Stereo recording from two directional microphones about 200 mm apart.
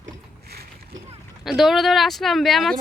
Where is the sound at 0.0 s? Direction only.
50° right (ahead or behind).